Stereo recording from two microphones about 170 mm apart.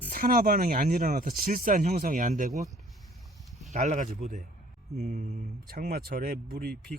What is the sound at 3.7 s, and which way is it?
Speech, 45° right (ahead or behind).